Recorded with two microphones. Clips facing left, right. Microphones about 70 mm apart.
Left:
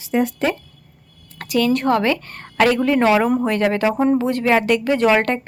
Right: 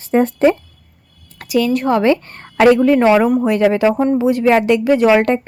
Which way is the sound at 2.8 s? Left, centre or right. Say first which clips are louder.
Right 4 dB; centre.